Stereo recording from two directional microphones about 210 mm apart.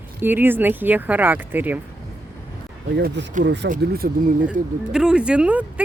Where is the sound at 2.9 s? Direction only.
55° right (ahead or behind).